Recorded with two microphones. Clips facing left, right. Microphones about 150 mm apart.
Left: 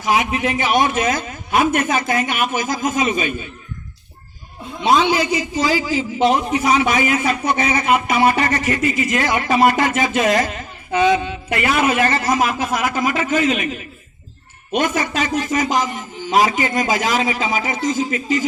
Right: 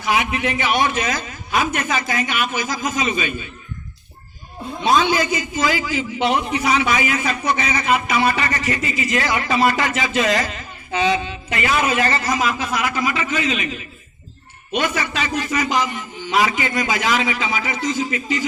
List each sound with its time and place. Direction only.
0.0 s a man's voice: 45° left (ahead or behind)
4.8 s a man's voice: 25° left (ahead or behind); by 18.4 s 45° left (ahead or behind)